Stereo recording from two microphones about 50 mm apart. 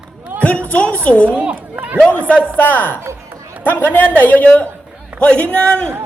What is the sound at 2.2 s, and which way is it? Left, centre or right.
A woman's voice, left.